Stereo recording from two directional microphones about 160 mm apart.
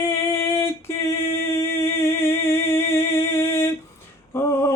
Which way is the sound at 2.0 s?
15° left (ahead or behind).